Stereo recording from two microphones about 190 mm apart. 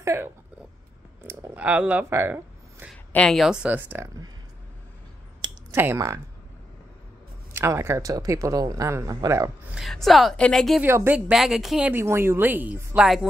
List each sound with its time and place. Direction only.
0.0 s speech: 15° right (ahead or behind)
1.2 s a sound: 10° right (ahead or behind)
2.9 s speech: 5° left (ahead or behind)
5.4 s a sound: 15° right (ahead or behind)
7.5 s a woman's voice: 15° right (ahead or behind)
9.8 s a woman's voice: centre (ahead or behind)
10.9 s a woman's voice: 10° right (ahead or behind)